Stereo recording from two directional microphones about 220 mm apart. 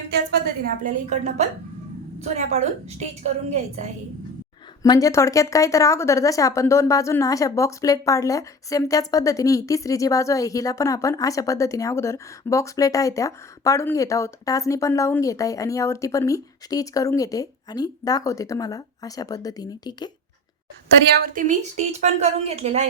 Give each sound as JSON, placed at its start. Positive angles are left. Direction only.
{"t": 0.9, "sound": "a woman's voice", "side_deg": -35}
{"t": 4.8, "sound": "speech", "side_deg": 15}
{"t": 21.2, "sound": "speech", "side_deg": -35}